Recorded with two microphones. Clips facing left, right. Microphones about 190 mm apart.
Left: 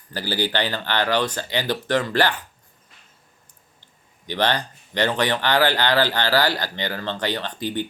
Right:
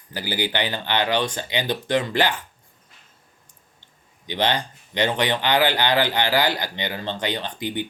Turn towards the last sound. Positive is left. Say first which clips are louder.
# left 1 dB
turn(degrees=-15)  # may be behind; listen again after turning